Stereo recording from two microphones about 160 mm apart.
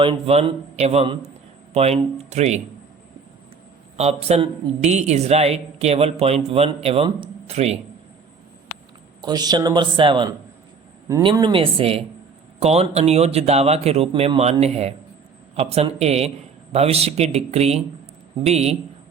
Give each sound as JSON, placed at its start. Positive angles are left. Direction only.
{"t": 0.0, "sound": "a woman's voice", "side_deg": -35}
{"t": 3.9, "sound": "a woman's voice", "side_deg": -40}
{"t": 9.2, "sound": "a woman's voice", "side_deg": -25}